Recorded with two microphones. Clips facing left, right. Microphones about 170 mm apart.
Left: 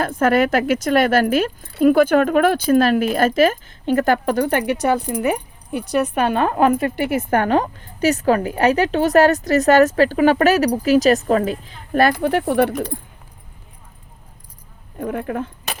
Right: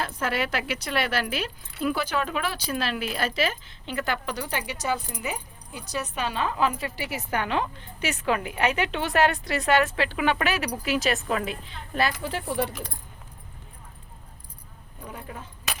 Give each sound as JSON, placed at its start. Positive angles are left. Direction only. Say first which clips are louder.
{"t": 0.0, "sound": "speech", "louder": "left 12 dB", "side_deg": 50}
{"t": 11.9, "sound": "speech", "louder": "left 11 dB", "side_deg": 55}
{"t": 14.9, "sound": "speech", "louder": "left 16 dB", "side_deg": 65}